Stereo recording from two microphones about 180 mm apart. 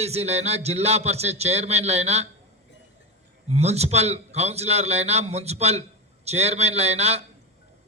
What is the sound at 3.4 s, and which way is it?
A man's voice, 35° right (ahead or behind).